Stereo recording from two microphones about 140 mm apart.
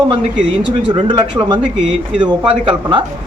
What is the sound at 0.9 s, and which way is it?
Speech, 35° right (ahead or behind).